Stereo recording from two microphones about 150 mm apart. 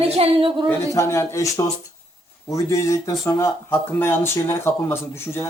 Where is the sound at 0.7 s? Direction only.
20° left (ahead or behind).